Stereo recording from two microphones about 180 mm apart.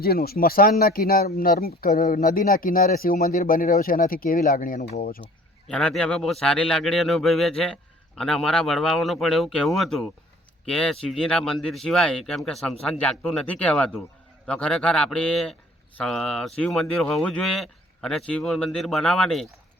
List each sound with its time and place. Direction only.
0.0 s speech: 60° left (ahead or behind)
5.6 s a man's voice: 5° left (ahead or behind)